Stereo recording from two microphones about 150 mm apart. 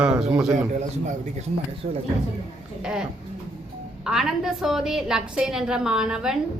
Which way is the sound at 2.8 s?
5° right (ahead or behind).